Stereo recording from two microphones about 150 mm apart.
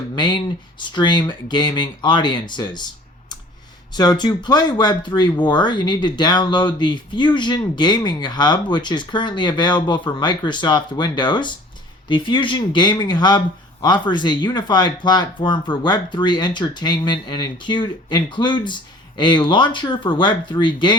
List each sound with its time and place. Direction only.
0.8 s speech: 30° left (ahead or behind)
3.9 s speech: 30° left (ahead or behind)